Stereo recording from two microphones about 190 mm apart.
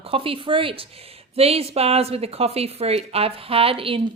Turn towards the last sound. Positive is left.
turn(degrees=-30)  # may be behind; listen again after turning